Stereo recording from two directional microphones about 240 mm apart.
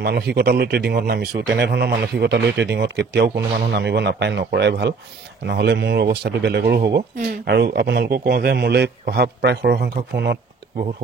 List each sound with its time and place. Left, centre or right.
0.0 s a man's voice: right